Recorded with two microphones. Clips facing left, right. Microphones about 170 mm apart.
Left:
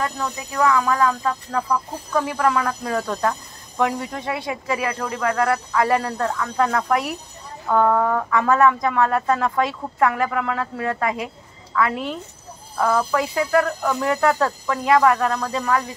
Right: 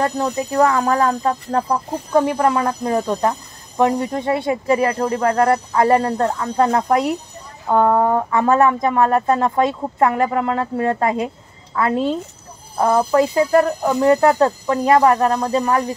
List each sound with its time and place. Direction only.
0.0 s speech: 40° right (ahead or behind)